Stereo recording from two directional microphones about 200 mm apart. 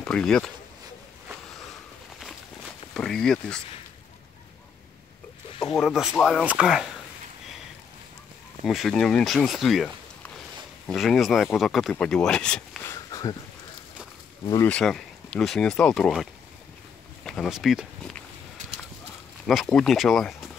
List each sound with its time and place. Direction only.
0.0 s speech: 5° left (ahead or behind)
2.9 s speech: 5° left (ahead or behind)
5.5 s a sound: 25° left (ahead or behind)
5.8 s speech: centre (ahead or behind)
8.6 s speech: centre (ahead or behind)
13.1 s a sound: 20° left (ahead or behind)
14.5 s speech: 10° left (ahead or behind)
19.4 s speech: centre (ahead or behind)